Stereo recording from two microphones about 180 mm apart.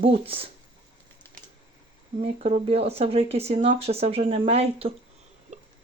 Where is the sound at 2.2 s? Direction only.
35° right (ahead or behind).